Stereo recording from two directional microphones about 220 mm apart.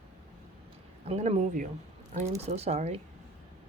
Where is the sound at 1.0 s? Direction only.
30° right (ahead or behind).